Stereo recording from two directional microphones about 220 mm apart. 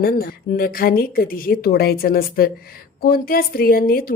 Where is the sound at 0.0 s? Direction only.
40° left (ahead or behind).